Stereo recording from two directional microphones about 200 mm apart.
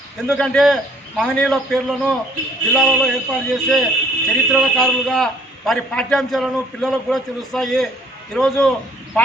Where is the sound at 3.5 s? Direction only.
Centre (ahead or behind).